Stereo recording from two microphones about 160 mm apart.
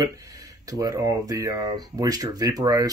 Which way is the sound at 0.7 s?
20° right (ahead or behind).